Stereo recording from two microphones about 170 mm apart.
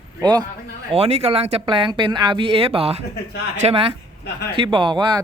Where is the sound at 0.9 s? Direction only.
35° right (ahead or behind).